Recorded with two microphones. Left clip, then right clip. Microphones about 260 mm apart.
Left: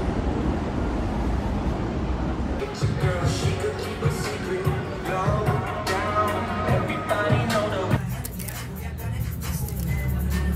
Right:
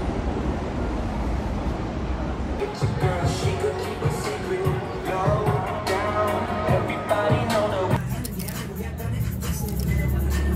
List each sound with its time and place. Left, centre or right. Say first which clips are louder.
5.2 s music: right 3 dB; right